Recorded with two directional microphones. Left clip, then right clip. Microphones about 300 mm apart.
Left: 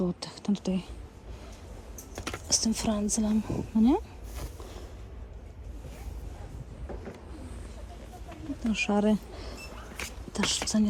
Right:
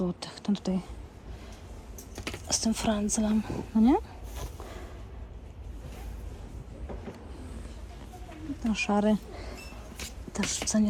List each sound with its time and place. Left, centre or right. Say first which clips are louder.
0.0 s speech: left 1 dB; centre
2.2 s speech: left 2 dB; centre
8.7 s speech: even; centre
10.0 s a sound: left 3 dB; centre